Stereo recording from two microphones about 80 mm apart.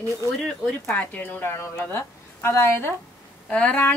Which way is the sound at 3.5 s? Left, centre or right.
Centre.